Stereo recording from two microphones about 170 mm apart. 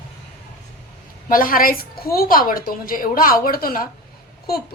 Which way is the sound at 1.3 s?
55° left (ahead or behind).